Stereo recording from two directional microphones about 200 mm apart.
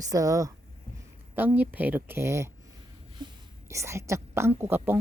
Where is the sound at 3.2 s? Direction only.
20° right (ahead or behind).